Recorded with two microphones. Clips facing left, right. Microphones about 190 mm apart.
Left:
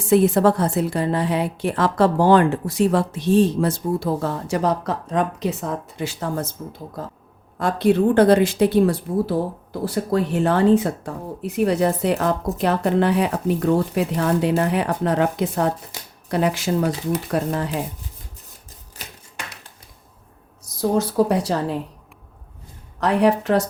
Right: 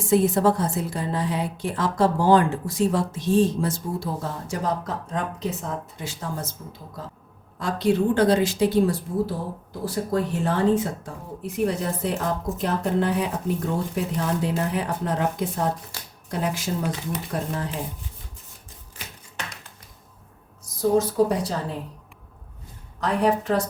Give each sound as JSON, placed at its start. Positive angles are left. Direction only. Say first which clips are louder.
{"t": 0.0, "sound": "speech", "louder": "left 4 dB", "side_deg": 70}
{"t": 7.6, "sound": "a woman's voice", "louder": "left 4 dB", "side_deg": 55}
{"t": 15.9, "sound": "speech", "louder": "left 2 dB", "side_deg": 20}
{"t": 16.3, "sound": "speech", "louder": "left 6 dB", "side_deg": 70}
{"t": 20.7, "sound": "a woman's voice", "louder": "even", "side_deg": 75}
{"t": 23.0, "sound": "speech", "louder": "left 4 dB", "side_deg": 75}